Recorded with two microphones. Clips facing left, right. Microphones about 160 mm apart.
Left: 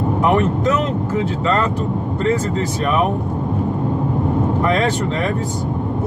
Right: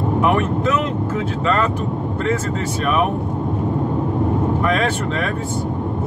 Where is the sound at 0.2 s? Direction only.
30° left (ahead or behind).